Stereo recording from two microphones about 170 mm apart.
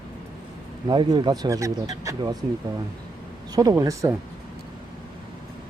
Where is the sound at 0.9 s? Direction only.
25° right (ahead or behind).